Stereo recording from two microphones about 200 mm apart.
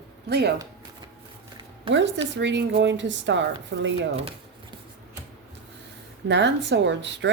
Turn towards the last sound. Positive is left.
turn(degrees=-60)  # may be behind; listen again after turning